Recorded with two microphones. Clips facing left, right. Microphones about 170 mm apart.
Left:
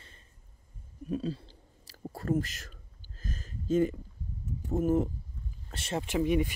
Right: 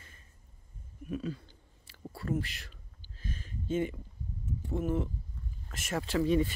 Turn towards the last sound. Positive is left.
turn(degrees=15)  # may be behind; listen again after turning